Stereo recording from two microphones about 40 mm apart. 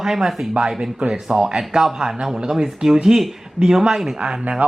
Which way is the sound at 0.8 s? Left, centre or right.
Right.